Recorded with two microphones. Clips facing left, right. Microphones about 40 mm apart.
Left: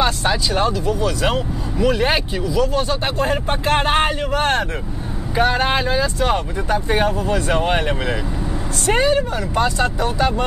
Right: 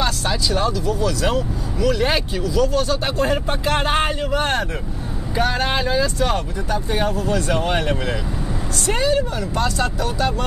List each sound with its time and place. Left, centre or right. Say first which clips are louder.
0.0 s vehicle: left 4 dB; left
0.6 s speech: left 2 dB; left
2.0 s speech: left 1 dB; centre
4.3 s speech: left 2 dB; left
5.3 s speech: left 3 dB; centre
8.8 s speech: left 3 dB; left